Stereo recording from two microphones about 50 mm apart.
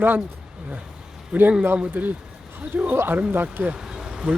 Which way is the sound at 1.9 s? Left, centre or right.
Right.